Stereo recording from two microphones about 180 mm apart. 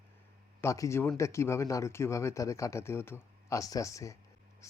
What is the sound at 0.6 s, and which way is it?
Speech, 15° left (ahead or behind).